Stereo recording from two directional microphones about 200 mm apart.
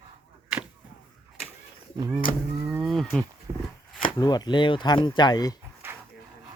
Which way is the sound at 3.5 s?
20° right (ahead or behind).